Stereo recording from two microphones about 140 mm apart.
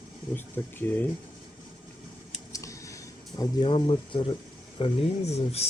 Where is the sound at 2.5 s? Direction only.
20° left (ahead or behind).